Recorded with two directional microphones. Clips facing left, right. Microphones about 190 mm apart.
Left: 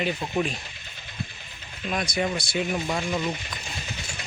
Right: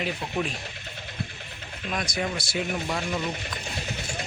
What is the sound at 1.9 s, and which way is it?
Speech, centre (ahead or behind).